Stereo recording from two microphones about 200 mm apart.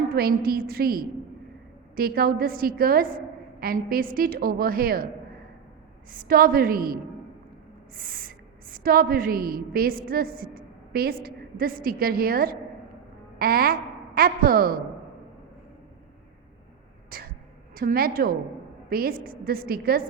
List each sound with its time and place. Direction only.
0.1 s a woman's voice: 50° right (ahead or behind)
6.1 s a woman's voice: 45° right (ahead or behind)
17.1 s a sound: 45° right (ahead or behind)
17.7 s a woman's voice: 50° right (ahead or behind)